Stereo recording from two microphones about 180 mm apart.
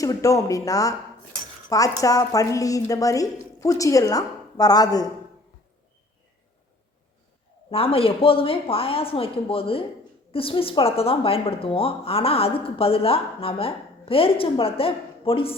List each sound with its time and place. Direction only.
0.0 s a woman's voice: 20° left (ahead or behind)
2.0 s a woman's voice: 20° left (ahead or behind)
7.7 s a woman's voice: 30° left (ahead or behind)